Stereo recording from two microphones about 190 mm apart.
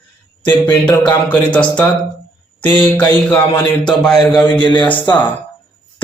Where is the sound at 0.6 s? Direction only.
10° left (ahead or behind).